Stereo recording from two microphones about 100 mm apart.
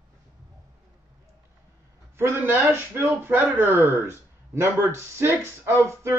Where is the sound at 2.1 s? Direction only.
25° right (ahead or behind).